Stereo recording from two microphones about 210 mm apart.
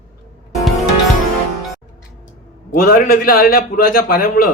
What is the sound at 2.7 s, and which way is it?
A man's voice, 40° left (ahead or behind).